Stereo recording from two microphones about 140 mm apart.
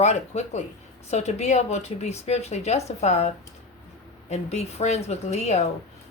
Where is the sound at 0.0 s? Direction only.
55° left (ahead or behind).